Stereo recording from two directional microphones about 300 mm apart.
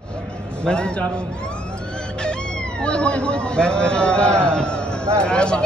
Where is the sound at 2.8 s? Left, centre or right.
Centre.